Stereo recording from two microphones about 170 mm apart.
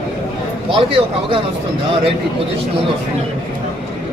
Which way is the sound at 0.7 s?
30° right (ahead or behind).